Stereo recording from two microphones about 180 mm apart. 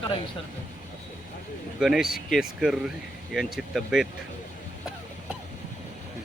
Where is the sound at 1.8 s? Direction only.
5° right (ahead or behind).